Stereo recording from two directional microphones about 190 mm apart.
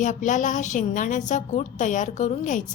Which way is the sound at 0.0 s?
40° left (ahead or behind).